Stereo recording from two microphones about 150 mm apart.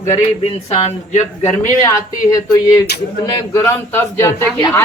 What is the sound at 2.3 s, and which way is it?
Speech, 20° left (ahead or behind).